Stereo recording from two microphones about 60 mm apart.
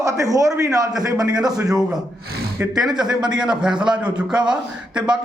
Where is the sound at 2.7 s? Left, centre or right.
Centre.